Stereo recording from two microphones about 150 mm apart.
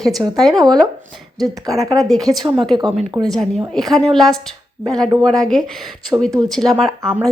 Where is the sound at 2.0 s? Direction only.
Centre (ahead or behind).